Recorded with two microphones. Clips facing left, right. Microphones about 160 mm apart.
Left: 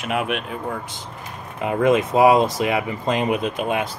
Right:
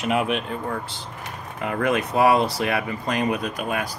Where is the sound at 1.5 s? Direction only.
20° left (ahead or behind).